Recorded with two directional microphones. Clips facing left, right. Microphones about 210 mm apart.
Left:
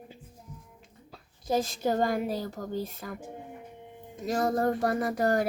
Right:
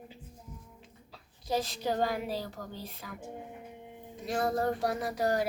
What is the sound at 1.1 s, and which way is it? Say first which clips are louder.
Child singing: left 4 dB; 45° left (ahead or behind).